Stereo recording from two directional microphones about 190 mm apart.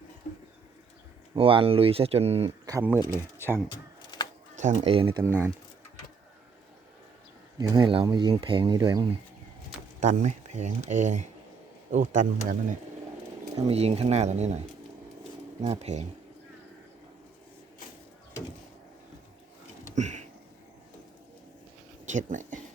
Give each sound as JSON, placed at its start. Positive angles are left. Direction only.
{"t": 1.4, "sound": "speech", "side_deg": -30}
{"t": 2.6, "sound": "speech", "side_deg": -15}
{"t": 3.7, "sound": "a sound", "side_deg": 25}
{"t": 4.5, "sound": "a sound", "side_deg": -40}
{"t": 4.8, "sound": "speech", "side_deg": -30}
{"t": 5.2, "sound": "speech", "side_deg": -10}
{"t": 7.6, "sound": "speech", "side_deg": -20}
{"t": 10.0, "sound": "speech", "side_deg": -40}
{"t": 13.7, "sound": "speech", "side_deg": -35}
{"t": 15.6, "sound": "speech", "side_deg": -35}
{"t": 20.0, "sound": "a sound", "side_deg": -40}
{"t": 22.1, "sound": "speech", "side_deg": -40}